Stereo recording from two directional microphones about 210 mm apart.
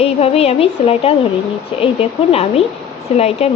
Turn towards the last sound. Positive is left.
turn(degrees=30)  # may be behind; listen again after turning